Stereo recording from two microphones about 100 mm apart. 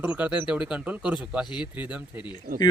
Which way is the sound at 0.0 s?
15° right (ahead or behind).